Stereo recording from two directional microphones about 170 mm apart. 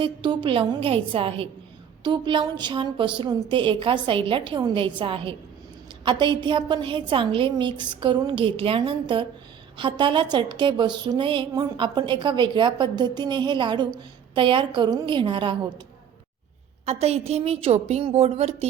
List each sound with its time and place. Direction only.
0.0 s a woman's voice: 30° right (ahead or behind)
16.8 s a woman's voice: 40° right (ahead or behind)